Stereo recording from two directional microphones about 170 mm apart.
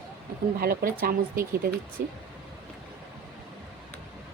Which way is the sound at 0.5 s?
60° right (ahead or behind).